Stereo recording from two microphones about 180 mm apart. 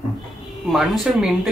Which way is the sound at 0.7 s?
Centre (ahead or behind).